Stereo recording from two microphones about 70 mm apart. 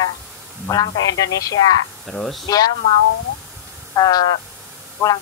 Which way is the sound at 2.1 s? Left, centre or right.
Centre.